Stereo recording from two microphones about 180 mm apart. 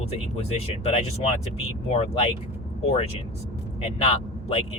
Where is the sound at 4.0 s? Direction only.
35° left (ahead or behind).